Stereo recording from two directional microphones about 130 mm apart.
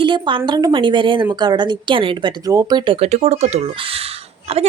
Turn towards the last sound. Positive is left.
turn(degrees=-55)  # may be behind; listen again after turning